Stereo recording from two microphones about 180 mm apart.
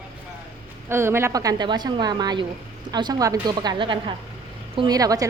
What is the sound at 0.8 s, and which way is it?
A woman's voice, 15° right (ahead or behind).